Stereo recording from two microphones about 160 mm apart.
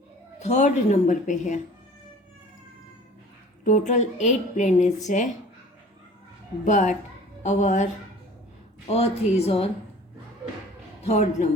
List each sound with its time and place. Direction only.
0.3 s a woman's voice: 45° left (ahead or behind)
3.6 s a woman's voice: 50° left (ahead or behind)
6.7 s a woman's voice: 45° left (ahead or behind)
8.9 s speech: 40° left (ahead or behind)
11.0 s speech: 45° left (ahead or behind)